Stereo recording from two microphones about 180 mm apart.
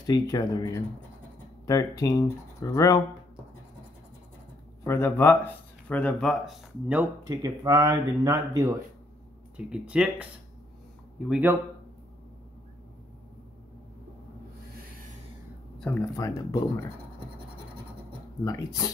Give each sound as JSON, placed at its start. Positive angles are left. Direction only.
{"t": 0.0, "sound": "speech", "side_deg": 20}
{"t": 4.8, "sound": "speech", "side_deg": 15}
{"t": 7.2, "sound": "speech", "side_deg": -20}
{"t": 9.6, "sound": "speech", "side_deg": -5}
{"t": 11.2, "sound": "speech", "side_deg": -5}
{"t": 16.2, "sound": "speech", "side_deg": 20}
{"t": 18.4, "sound": "speech", "side_deg": 20}